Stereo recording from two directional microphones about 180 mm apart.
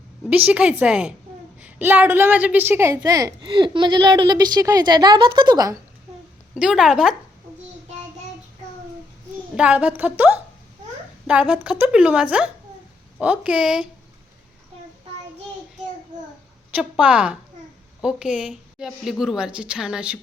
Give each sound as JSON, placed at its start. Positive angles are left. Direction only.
{"t": 0.3, "sound": "a woman's voice", "side_deg": -10}
{"t": 6.6, "sound": "a woman's voice", "side_deg": -5}
{"t": 9.6, "sound": "a woman's voice", "side_deg": -5}
{"t": 16.7, "sound": "a woman's voice", "side_deg": -5}